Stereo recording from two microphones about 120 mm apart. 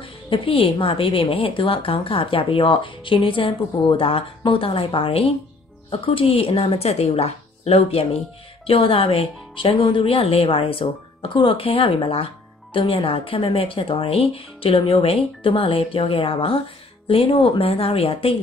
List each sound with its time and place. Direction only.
0.0 s a woman's voice: 45° left (ahead or behind)